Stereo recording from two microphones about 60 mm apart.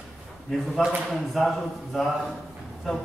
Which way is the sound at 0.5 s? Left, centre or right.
Centre.